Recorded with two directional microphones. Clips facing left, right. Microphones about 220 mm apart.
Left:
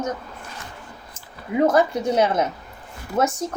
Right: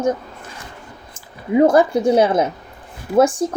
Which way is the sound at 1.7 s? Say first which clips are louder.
Right 5 dB; 30° right (ahead or behind).